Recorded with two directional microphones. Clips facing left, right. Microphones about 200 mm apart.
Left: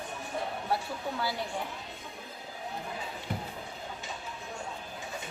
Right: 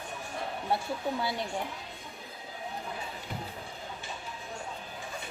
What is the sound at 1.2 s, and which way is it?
Speech, 20° right (ahead or behind).